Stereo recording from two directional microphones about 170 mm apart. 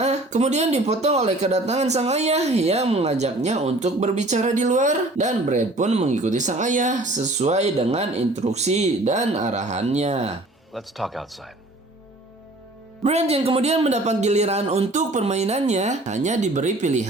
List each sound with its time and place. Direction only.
0.0 s speech: 40° right (ahead or behind)
10.8 s speech: centre (ahead or behind)
13.0 s speech: 40° right (ahead or behind)